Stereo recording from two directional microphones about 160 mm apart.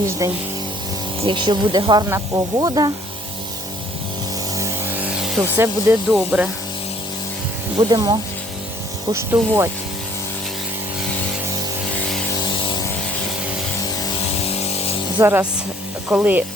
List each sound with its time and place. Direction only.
0.2 s speech: 20° right (ahead or behind)
5.4 s speech: 15° right (ahead or behind)
6.1 s speech: 5° right (ahead or behind)
7.8 s speech: 25° right (ahead or behind)
15.2 s speech: 10° right (ahead or behind)